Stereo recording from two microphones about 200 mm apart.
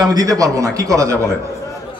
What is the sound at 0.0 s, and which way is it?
A man's voice, 20° right (ahead or behind).